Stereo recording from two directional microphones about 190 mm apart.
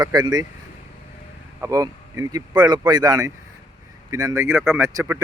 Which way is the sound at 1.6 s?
15° right (ahead or behind).